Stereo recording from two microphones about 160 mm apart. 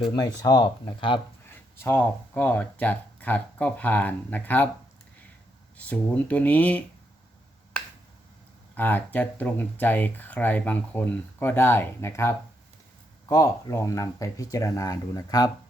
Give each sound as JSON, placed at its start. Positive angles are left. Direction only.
{"t": 0.0, "sound": "speech", "side_deg": 25}
{"t": 1.5, "sound": "speech", "side_deg": 15}
{"t": 5.7, "sound": "speech", "side_deg": 10}
{"t": 8.7, "sound": "speech", "side_deg": 10}